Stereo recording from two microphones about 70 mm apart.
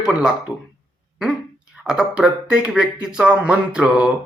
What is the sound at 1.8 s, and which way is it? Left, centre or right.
Speech, centre.